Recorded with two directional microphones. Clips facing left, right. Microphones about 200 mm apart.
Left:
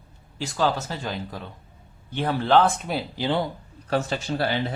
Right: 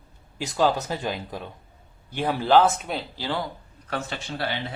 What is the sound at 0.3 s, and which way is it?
Speech, 20° right (ahead or behind).